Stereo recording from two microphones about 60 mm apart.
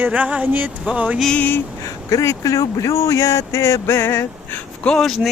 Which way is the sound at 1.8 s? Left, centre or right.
Left.